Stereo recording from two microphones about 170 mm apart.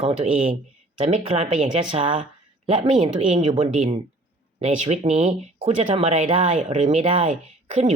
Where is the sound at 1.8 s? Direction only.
30° right (ahead or behind).